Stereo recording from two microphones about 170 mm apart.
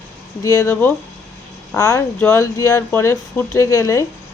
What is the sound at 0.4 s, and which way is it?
Speech, 15° left (ahead or behind).